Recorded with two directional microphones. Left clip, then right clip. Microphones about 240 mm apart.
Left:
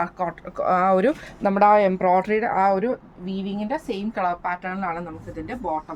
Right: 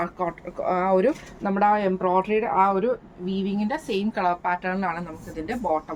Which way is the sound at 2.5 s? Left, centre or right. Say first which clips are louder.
Even; left.